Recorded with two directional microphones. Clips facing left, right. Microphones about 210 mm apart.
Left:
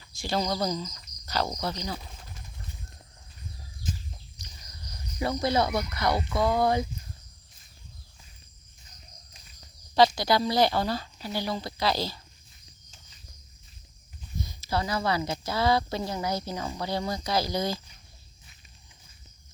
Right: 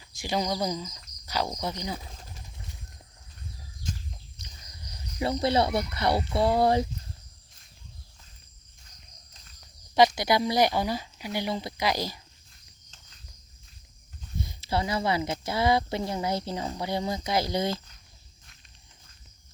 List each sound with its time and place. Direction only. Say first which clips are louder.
0.1 s a woman's voice: even; 15° right (ahead or behind)
1.0 s cricket: even; 10° right (ahead or behind)
4.8 s speech: right 1 dB; 25° right (ahead or behind)
9.9 s a woman's voice: even; 20° right (ahead or behind)
14.4 s speech: right 1 dB; 25° right (ahead or behind)